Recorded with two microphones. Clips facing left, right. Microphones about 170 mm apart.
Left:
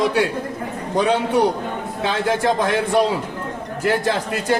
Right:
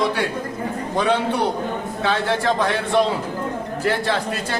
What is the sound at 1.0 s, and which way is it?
Speech, 40° left (ahead or behind).